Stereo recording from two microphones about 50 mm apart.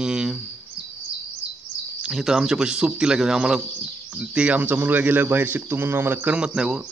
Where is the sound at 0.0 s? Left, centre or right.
Centre.